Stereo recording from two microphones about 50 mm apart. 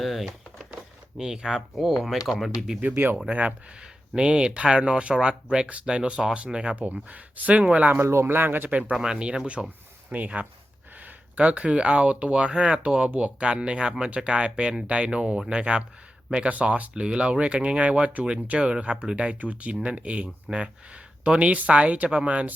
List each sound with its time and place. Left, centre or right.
0.0 s a sound: centre
1.2 s speech: centre
2.9 s speech: right
3.2 s speech: right
8.0 s speech: right
8.7 s speech: right
9.0 s speech: centre
16.9 s speech: centre